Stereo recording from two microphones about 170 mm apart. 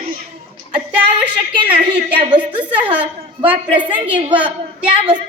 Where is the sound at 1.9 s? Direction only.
30° right (ahead or behind).